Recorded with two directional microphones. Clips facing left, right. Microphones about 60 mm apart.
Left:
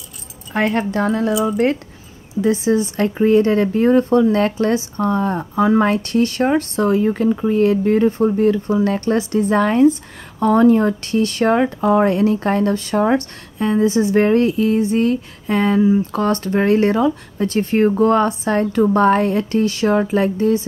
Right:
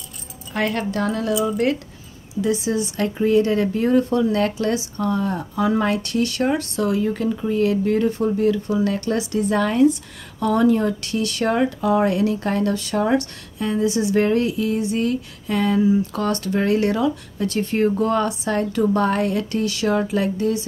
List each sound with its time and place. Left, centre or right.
0.5 s speech: left